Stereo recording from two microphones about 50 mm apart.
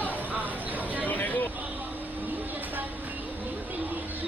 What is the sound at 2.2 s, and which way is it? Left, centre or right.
Train, right.